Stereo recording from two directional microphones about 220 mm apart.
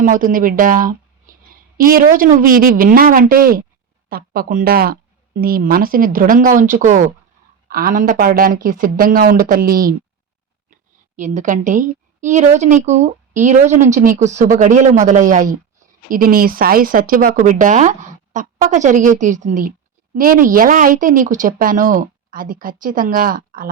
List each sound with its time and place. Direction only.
0.0 s a woman's voice: 40° right (ahead or behind)
11.2 s a woman's voice: 35° right (ahead or behind)